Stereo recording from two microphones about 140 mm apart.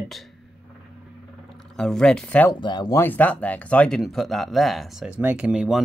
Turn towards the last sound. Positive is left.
turn(degrees=-5)  # may be behind; listen again after turning